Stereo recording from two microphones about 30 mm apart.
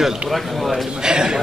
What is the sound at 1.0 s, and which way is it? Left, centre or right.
Speech, right.